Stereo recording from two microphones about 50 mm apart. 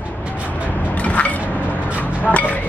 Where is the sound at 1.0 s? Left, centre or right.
Left.